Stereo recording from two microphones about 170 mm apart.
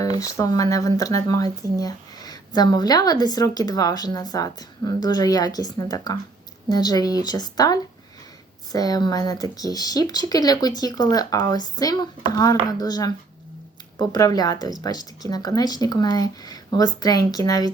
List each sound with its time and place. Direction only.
0.2 s a woman's voice: 20° left (ahead or behind)